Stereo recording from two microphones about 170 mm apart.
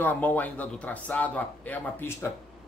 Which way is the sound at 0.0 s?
10° left (ahead or behind).